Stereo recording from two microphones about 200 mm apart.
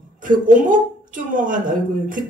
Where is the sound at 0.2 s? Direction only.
40° right (ahead or behind).